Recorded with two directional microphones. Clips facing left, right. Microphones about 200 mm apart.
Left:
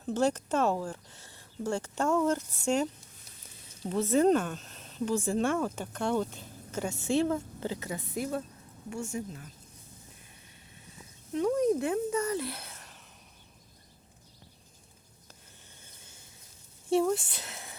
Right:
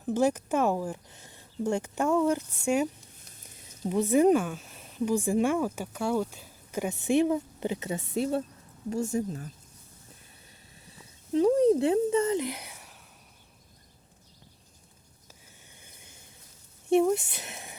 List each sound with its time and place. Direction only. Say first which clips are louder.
0.0 s speech: right 2 dB; 10° right (ahead or behind); by 9.5 s 40° right (ahead or behind)
11.3 s speech: right 5 dB; 30° right (ahead or behind); by 13.0 s 10° right (ahead or behind)
15.8 s a sound: right 2 dB; 15° right (ahead or behind)
16.9 s speech: right 3 dB; 20° right (ahead or behind)